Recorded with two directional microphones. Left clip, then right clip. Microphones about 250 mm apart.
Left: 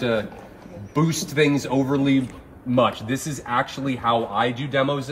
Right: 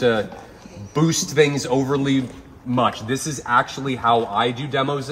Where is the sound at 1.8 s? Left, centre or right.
Centre.